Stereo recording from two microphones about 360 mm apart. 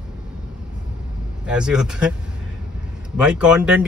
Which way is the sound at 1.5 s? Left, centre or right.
Centre.